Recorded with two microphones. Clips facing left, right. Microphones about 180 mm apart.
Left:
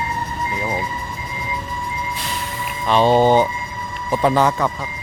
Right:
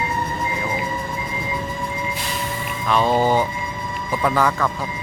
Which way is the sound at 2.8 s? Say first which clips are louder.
Left 4 dB; 30° left (ahead or behind).